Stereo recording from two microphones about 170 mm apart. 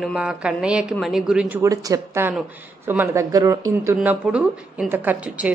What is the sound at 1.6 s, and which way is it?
A woman's voice, 20° right (ahead or behind).